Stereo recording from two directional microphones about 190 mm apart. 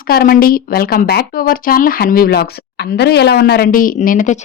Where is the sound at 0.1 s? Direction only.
50° left (ahead or behind).